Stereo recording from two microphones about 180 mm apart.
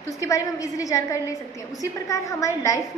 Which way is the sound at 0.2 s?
20° left (ahead or behind).